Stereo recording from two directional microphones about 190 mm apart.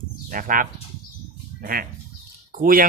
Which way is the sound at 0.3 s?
45° right (ahead or behind).